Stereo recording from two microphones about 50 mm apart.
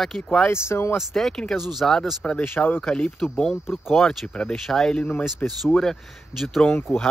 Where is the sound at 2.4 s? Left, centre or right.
Left.